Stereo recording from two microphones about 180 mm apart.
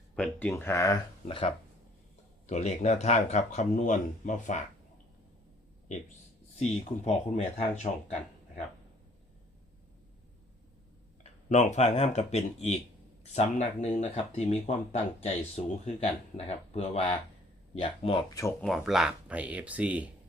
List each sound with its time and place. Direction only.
0.2 s speech: 10° left (ahead or behind)
1.3 s speech: 30° left (ahead or behind)
6.6 s speech: 35° left (ahead or behind)
11.2 s speech: 40° left (ahead or behind)
18.6 s speech: centre (ahead or behind)